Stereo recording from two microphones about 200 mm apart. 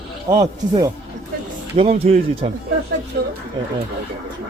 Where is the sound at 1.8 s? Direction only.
30° right (ahead or behind).